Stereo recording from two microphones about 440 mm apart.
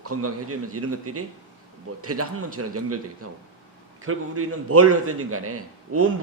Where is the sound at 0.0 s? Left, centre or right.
Right.